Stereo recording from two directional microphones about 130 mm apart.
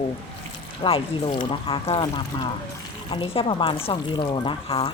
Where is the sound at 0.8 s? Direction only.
40° left (ahead or behind).